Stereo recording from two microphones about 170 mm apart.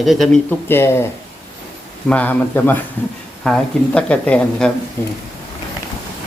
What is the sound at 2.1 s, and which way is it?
A woman's voice, 10° left (ahead or behind).